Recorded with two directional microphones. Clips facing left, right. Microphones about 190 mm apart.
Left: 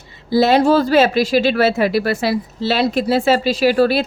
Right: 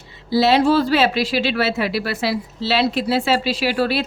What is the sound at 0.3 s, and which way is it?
Speech, 50° left (ahead or behind).